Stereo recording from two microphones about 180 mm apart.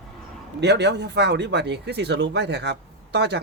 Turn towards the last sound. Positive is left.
turn(degrees=-70)  # may be behind; listen again after turning